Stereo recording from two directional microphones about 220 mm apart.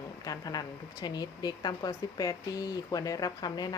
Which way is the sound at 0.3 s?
15° left (ahead or behind).